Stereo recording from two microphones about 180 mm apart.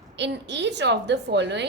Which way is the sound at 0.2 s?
75° right (ahead or behind).